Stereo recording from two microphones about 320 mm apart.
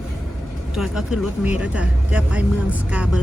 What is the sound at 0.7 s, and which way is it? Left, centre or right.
Speech, centre.